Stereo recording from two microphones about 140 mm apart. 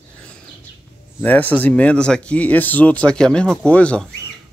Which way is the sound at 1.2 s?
10° left (ahead or behind).